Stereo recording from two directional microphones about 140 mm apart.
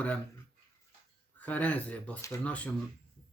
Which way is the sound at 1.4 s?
10° left (ahead or behind).